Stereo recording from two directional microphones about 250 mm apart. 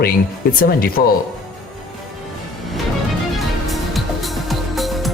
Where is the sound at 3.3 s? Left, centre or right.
Centre.